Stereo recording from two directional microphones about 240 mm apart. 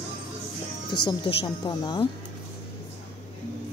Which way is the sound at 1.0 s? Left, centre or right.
Left.